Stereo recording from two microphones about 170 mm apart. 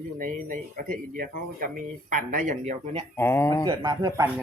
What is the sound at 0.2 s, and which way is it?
Speech, 55° right (ahead or behind).